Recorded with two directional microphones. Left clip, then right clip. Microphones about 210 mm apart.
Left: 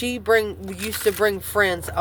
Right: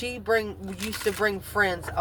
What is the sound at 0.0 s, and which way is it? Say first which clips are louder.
Speech: left 6 dB; 50° left (ahead or behind).